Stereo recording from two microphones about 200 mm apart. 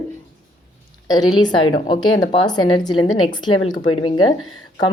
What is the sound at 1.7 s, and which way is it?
A woman's voice, 20° left (ahead or behind).